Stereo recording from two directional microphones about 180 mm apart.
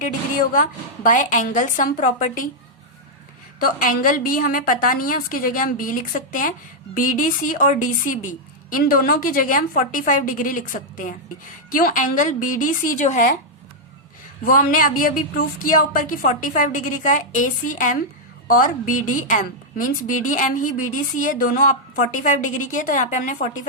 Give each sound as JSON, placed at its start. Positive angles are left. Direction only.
{"t": 0.0, "sound": "a woman's voice", "side_deg": 50}
{"t": 3.6, "sound": "a woman's voice", "side_deg": 50}
{"t": 14.4, "sound": "a woman's voice", "side_deg": 50}